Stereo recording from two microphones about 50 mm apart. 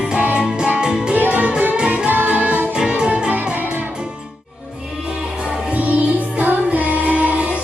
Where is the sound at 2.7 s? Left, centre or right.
Centre.